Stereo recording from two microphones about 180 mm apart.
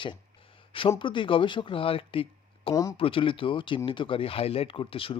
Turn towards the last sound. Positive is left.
turn(degrees=30)  # may be behind; listen again after turning